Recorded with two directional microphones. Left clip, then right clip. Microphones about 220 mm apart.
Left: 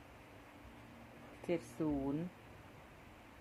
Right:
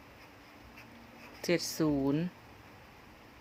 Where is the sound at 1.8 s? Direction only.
40° right (ahead or behind).